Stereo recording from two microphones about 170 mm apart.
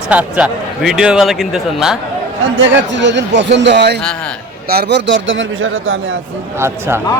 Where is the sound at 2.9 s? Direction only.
90° right.